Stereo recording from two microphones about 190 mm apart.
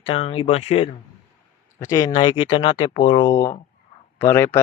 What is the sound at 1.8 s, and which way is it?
Speech, 15° left (ahead or behind).